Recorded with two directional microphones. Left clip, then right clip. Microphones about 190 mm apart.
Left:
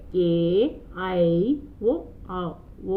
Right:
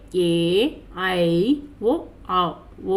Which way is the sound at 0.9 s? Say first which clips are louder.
Right 3 dB; 20° right (ahead or behind).